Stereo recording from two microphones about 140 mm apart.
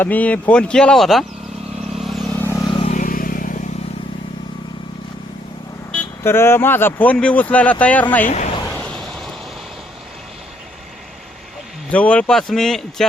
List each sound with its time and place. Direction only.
0.0 s speech: 10° left (ahead or behind)
2.0 s vehicle: centre (ahead or behind)
2.4 s vehicle: 20° left (ahead or behind)
2.8 s vehicle: 65° left (ahead or behind)
5.9 s speech: 15° left (ahead or behind)
8.7 s a sound: 5° left (ahead or behind)
11.9 s speech: 10° left (ahead or behind)